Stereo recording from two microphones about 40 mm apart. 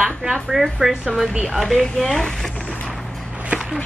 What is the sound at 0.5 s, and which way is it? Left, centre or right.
Speech, centre.